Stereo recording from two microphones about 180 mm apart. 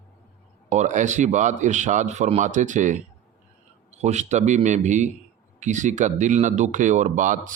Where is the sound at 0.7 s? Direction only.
40° right (ahead or behind).